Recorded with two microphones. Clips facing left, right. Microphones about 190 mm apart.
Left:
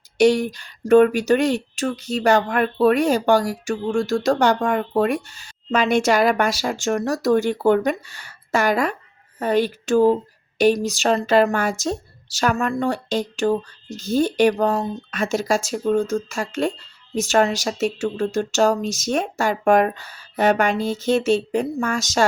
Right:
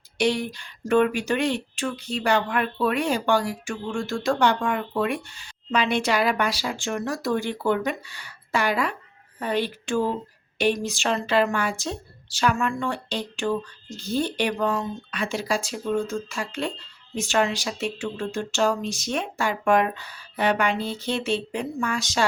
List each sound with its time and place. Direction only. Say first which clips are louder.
0.2 s speech: left 8 dB; 45° left (ahead or behind)